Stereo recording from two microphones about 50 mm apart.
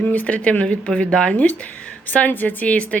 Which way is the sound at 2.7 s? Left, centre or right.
Left.